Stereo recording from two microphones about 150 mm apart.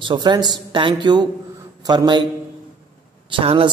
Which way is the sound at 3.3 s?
40° right (ahead or behind).